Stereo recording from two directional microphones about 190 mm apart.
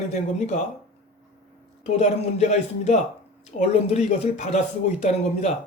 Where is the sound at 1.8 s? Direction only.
35° left (ahead or behind).